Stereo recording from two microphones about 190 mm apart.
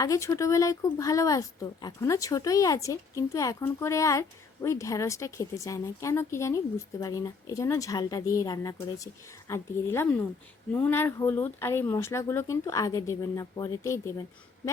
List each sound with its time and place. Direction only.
0.0 s speech: 15° left (ahead or behind)